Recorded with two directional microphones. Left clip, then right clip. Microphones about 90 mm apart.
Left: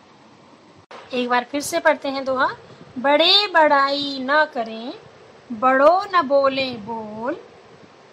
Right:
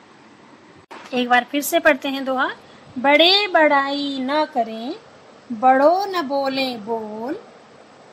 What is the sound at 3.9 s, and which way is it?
Speech, 40° right (ahead or behind).